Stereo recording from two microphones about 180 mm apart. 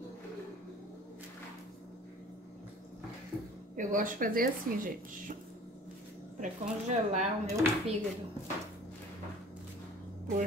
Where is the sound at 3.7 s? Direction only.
50° right (ahead or behind).